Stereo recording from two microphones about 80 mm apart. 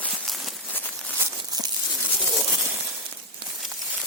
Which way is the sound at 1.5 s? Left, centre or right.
Right.